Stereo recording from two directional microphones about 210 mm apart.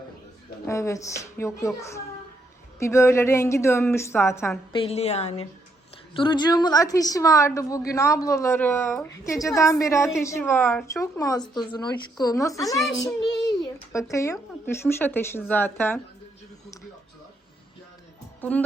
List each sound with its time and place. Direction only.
0.7 s a woman's voice: 15° left (ahead or behind)
4.7 s a woman's voice: 25° left (ahead or behind)
13.6 s a sound: 15° left (ahead or behind)
14.9 s a woman's voice: 10° left (ahead or behind)
18.3 s a woman's voice: 5° left (ahead or behind)